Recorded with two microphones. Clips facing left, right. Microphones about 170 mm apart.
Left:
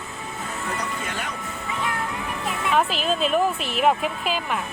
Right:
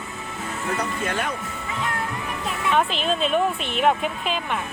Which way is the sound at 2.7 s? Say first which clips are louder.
Even; 5° left (ahead or behind).